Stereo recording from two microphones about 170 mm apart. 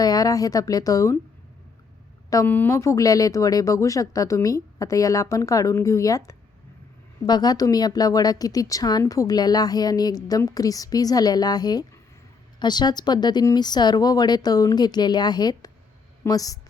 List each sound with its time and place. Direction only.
0.0 s a woman's voice: 20° left (ahead or behind)
2.3 s a woman's voice: 15° left (ahead or behind)